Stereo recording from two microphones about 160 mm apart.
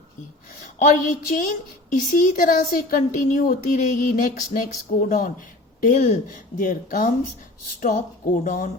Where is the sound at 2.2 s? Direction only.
60° left (ahead or behind).